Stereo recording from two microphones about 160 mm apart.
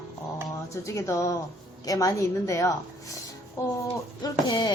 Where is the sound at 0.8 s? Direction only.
20° left (ahead or behind).